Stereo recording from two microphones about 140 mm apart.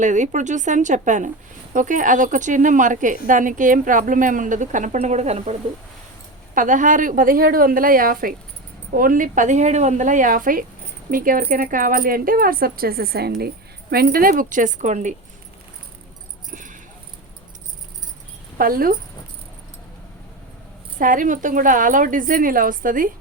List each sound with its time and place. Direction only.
0.0 s speech: 60° right (ahead or behind)
6.5 s a woman's voice: 65° right (ahead or behind); by 8.4 s 90° right
9.0 s speech: 75° right (ahead or behind); by 15.1 s 60° right (ahead or behind)
16.5 s a sound: 70° right (ahead or behind)
18.5 s speech: 90° right
21.0 s speech: 70° right (ahead or behind)